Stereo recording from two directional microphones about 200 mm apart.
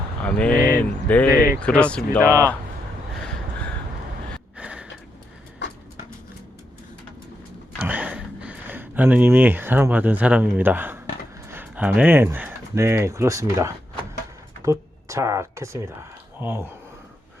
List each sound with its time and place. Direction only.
0.2 s speech: 5° left (ahead or behind)
0.5 s speech: 45° left (ahead or behind)
0.8 s a sound: 5° left (ahead or behind)
1.3 s speech: 50° left (ahead or behind)
1.6 s speech: 5° left (ahead or behind)
2.2 s speech: 15° right (ahead or behind)
4.5 s a sound: 5° right (ahead or behind)
7.8 s speech: 5° right (ahead or behind)